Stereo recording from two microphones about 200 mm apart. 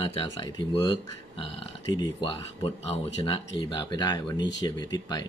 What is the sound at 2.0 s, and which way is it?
Speech, 25° left (ahead or behind).